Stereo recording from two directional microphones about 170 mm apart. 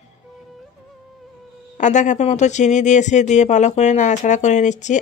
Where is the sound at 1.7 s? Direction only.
45° left (ahead or behind).